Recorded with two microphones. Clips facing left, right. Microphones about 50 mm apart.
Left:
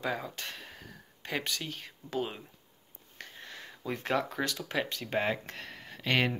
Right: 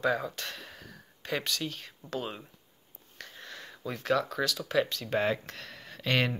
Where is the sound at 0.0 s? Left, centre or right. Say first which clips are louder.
Right 5 dB; centre.